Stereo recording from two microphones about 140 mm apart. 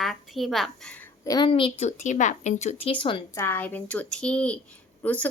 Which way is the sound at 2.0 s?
60° left (ahead or behind).